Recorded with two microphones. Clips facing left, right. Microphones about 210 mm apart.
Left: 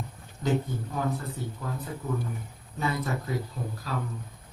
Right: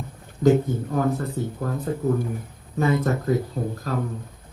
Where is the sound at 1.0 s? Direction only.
45° right (ahead or behind).